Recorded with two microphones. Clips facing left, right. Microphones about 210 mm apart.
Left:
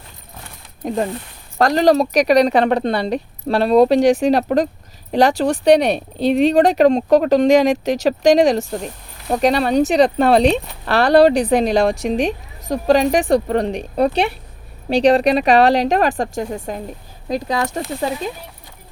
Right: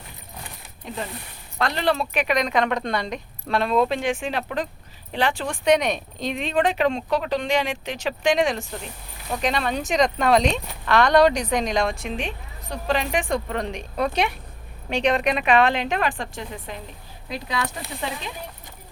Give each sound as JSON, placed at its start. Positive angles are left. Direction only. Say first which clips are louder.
{"t": 0.8, "sound": "speech", "louder": "left 11 dB", "side_deg": 45}